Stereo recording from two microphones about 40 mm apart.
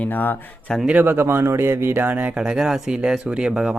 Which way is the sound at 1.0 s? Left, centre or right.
Right.